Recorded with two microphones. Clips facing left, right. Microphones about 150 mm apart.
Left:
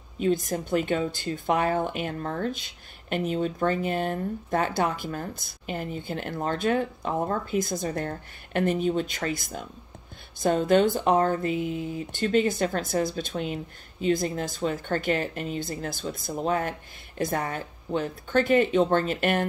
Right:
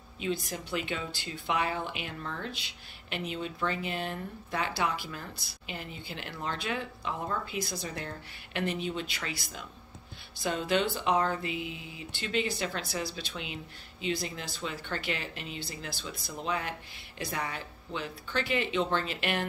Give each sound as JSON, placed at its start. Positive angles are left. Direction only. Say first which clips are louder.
{"t": 0.2, "sound": "speech", "louder": "left 8 dB", "side_deg": 45}